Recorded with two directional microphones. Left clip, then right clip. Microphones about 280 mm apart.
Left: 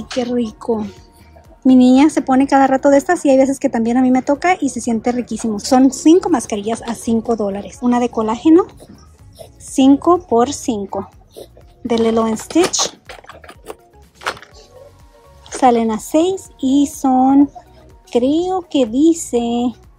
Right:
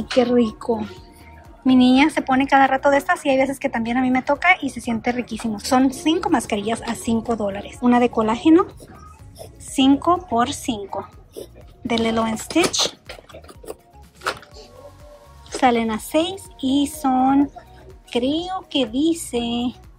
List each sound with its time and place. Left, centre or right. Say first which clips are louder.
0.2 s a woman's voice: right 2 dB; centre
9.8 s a woman's voice: left 5 dB; left
15.5 s a woman's voice: left 5 dB; centre